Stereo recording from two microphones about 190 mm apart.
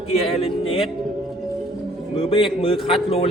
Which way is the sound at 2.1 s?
30° left (ahead or behind).